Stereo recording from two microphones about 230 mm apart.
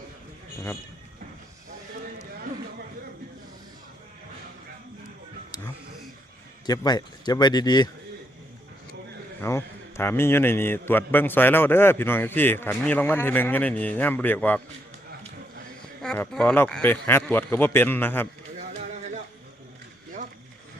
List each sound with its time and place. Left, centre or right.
6.7 s a man's voice: centre
9.4 s a man's voice: centre
16.0 s a man's voice: centre